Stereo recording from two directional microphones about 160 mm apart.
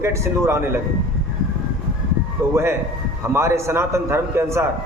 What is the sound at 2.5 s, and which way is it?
A man's voice, 15° right (ahead or behind).